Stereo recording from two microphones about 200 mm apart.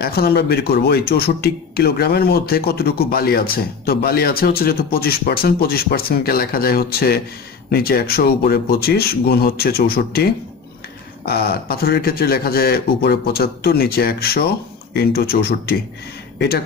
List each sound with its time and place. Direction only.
0.0 s a man's voice: 50° left (ahead or behind)
11.2 s a man's voice: 50° left (ahead or behind)